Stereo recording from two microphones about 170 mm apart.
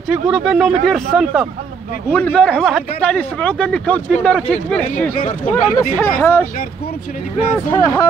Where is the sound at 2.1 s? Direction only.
10° left (ahead or behind).